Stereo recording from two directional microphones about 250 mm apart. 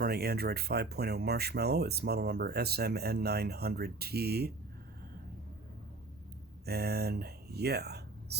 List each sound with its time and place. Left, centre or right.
0.0 s speech: right
6.7 s speech: right